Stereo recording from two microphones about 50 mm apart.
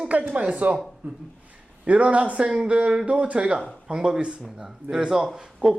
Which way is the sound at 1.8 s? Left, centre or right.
Right.